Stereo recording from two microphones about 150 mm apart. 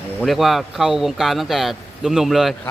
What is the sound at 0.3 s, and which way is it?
Speech, centre (ahead or behind).